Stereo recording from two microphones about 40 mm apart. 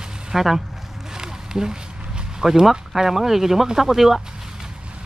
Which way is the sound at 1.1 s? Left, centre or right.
Centre.